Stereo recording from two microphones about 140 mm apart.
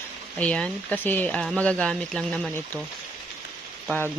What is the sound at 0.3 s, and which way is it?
Speech, 10° left (ahead or behind).